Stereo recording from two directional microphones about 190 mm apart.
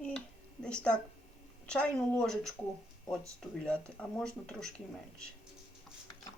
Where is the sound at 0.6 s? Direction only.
5° left (ahead or behind).